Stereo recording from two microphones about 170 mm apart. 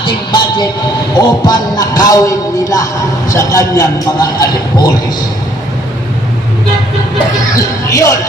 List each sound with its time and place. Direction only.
0.0 s train: 25° left (ahead or behind)
1.2 s speech: 25° left (ahead or behind)
7.5 s speech: 20° left (ahead or behind)